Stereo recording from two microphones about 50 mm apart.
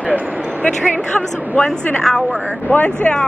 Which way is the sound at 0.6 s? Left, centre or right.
Left.